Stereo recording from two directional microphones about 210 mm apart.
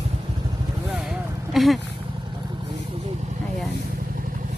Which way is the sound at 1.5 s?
Centre (ahead or behind).